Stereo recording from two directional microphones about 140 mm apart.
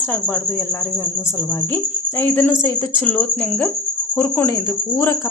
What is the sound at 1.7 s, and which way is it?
Speech, 15° left (ahead or behind).